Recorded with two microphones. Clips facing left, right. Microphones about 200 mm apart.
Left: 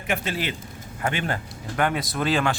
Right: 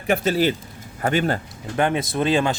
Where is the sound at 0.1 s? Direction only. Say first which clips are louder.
Right 8 dB; 40° right (ahead or behind).